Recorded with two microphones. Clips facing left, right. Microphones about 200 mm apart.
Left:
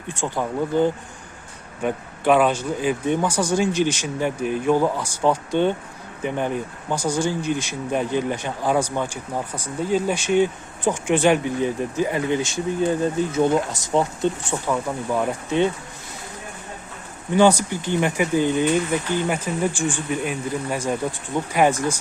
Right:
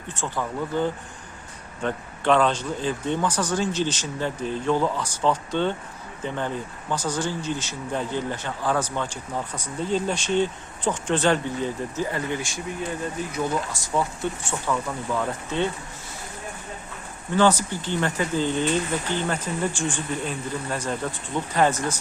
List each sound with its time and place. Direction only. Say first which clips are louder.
0.1 s speech: left 4 dB; 15° left (ahead or behind)
17.3 s speech: left 4 dB; 15° left (ahead or behind)